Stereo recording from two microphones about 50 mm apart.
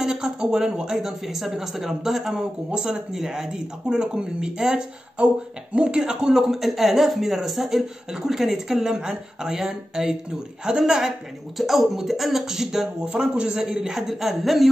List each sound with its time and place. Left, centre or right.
0.0 s speech: centre
2.3 s speech: centre
6.5 s speech: centre